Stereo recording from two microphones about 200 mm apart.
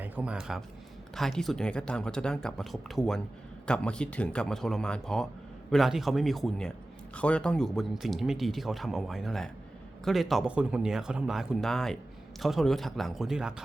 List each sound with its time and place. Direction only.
0.0 s speech: 5° right (ahead or behind)